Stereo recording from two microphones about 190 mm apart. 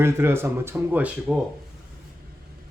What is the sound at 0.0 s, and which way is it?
Speech, 15° right (ahead or behind).